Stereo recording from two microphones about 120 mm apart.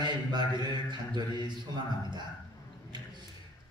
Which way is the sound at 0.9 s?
40° right (ahead or behind).